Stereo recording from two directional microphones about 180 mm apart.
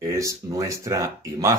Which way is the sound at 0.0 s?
15° right (ahead or behind).